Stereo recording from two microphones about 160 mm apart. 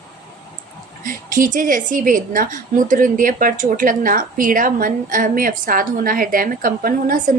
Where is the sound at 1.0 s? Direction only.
55° right (ahead or behind).